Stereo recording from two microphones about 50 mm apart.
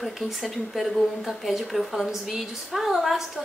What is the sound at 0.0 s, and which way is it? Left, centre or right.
Speech, centre.